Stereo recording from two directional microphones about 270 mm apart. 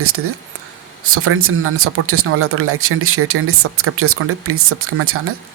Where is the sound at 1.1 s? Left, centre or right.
Right.